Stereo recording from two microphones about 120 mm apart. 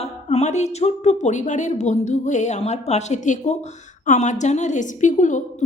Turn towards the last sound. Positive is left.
turn(degrees=90)